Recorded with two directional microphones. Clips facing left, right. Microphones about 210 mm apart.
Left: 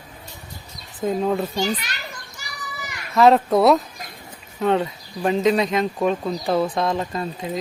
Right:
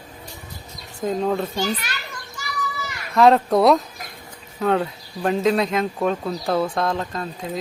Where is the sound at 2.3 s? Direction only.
15° left (ahead or behind).